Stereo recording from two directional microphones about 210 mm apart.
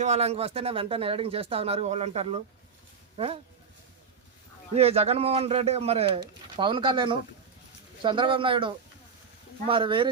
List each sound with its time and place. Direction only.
0.0 s speech: 30° right (ahead or behind)
4.7 s speech: 30° right (ahead or behind)